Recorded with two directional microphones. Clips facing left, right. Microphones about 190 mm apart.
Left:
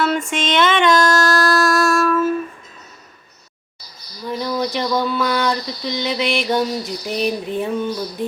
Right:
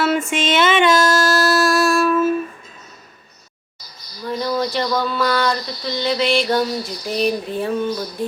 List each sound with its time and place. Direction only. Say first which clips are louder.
0.0 s female singing: right 1 dB; 5° right (ahead or behind)
4.3 s speech: right 1 dB; 15° left (ahead or behind)